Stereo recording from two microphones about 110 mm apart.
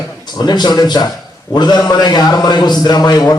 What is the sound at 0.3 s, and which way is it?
A man's voice, 40° left (ahead or behind).